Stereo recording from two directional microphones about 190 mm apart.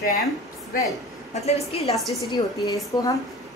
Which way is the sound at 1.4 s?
30° left (ahead or behind).